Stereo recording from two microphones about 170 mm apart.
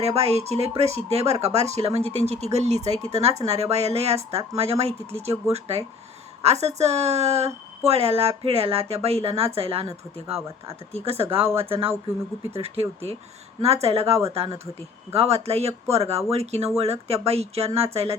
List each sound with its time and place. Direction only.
0.0 s speech: 35° right (ahead or behind)
10.9 s speech: 35° right (ahead or behind)